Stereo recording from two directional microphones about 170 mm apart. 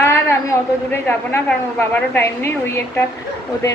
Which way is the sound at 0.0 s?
15° left (ahead or behind).